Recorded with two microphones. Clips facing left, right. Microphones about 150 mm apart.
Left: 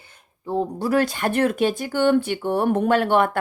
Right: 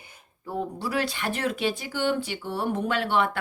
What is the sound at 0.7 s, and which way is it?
Speech, 45° left (ahead or behind).